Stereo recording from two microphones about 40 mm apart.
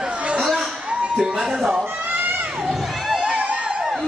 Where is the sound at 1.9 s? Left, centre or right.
Right.